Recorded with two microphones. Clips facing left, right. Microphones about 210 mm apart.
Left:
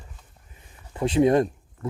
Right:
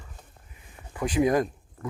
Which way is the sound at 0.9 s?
25° left (ahead or behind).